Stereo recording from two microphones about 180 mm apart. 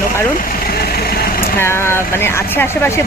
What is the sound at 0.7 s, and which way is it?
Vehicle, 60° left (ahead or behind).